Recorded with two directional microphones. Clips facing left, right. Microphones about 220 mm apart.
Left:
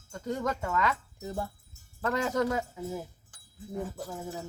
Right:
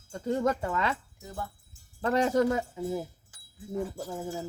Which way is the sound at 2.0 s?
30° right (ahead or behind).